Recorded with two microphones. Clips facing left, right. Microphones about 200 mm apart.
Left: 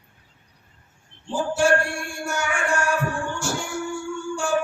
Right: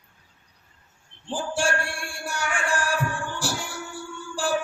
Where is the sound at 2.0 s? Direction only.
30° right (ahead or behind).